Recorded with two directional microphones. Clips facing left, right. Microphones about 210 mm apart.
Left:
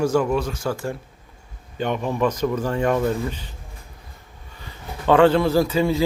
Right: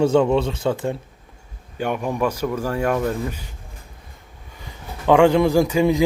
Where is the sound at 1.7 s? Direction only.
10° right (ahead or behind).